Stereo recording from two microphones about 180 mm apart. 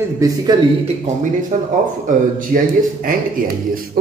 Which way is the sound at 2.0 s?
50° right (ahead or behind).